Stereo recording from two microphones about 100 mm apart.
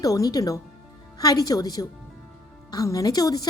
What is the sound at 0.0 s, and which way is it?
Speech, 35° left (ahead or behind).